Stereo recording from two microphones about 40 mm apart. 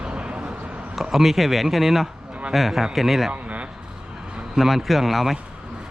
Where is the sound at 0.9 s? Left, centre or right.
Centre.